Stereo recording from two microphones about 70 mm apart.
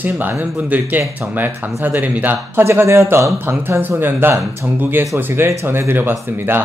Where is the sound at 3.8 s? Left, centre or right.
Right.